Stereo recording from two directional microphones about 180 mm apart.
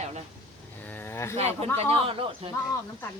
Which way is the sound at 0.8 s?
10° left (ahead or behind).